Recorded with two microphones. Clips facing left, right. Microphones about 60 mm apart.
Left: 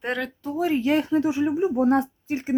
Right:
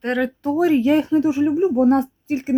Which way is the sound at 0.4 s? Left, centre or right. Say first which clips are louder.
Right 7 dB; right.